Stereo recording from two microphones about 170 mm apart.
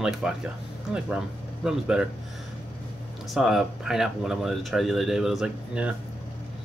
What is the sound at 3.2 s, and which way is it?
Speech, centre (ahead or behind).